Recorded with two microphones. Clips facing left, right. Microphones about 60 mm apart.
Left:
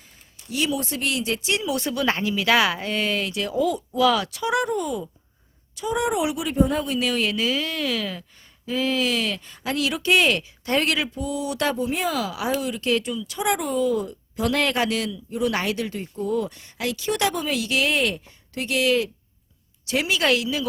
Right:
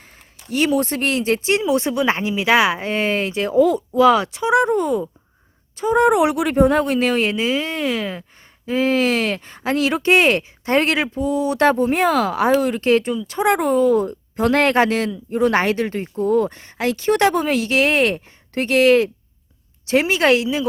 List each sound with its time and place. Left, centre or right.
0.4 s a woman's voice: right
6.1 s speech: right